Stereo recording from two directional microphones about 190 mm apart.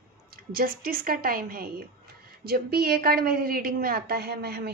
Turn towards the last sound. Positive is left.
turn(degrees=-60)  # may be behind; listen again after turning